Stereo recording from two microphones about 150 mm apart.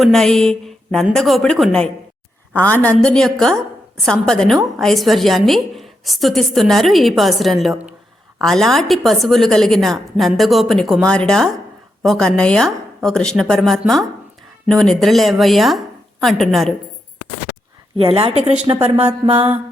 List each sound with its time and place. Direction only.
0.0 s a woman's voice: 5° left (ahead or behind)
17.9 s a woman's voice: 40° right (ahead or behind)
19.3 s mantra: 40° right (ahead or behind)